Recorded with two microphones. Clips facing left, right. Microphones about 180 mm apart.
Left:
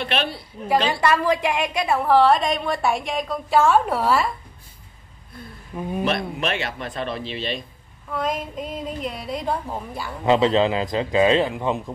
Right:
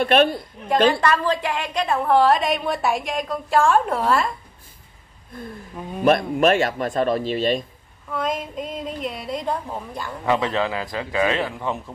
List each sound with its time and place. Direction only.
0.0 s speech: 45° right (ahead or behind)
1.0 s a woman's voice: 10° left (ahead or behind)
5.8 s speech: 10° left (ahead or behind)
6.0 s speech: 45° right (ahead or behind)
8.1 s a woman's voice: centre (ahead or behind)
10.2 s a man's voice: 20° left (ahead or behind)